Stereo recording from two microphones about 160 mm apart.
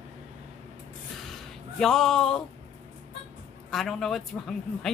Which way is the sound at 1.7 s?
5° left (ahead or behind).